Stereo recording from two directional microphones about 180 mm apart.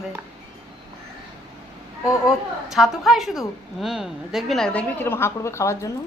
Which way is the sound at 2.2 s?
Centre (ahead or behind).